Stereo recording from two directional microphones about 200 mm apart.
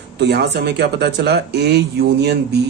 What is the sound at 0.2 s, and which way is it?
Speech, 55° right (ahead or behind).